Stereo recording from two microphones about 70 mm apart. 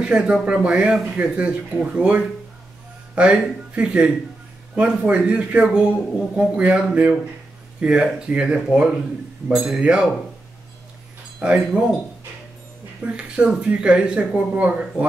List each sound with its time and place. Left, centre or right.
0.0 s speech: centre
11.4 s speech: centre
13.0 s speech: centre